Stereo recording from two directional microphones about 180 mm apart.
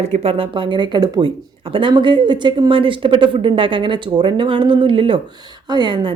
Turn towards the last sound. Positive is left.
turn(degrees=-25)  # may be behind; listen again after turning